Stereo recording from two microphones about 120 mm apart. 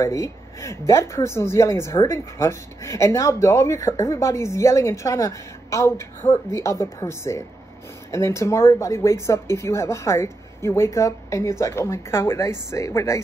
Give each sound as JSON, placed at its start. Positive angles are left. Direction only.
{"t": 0.0, "sound": "speech", "side_deg": 25}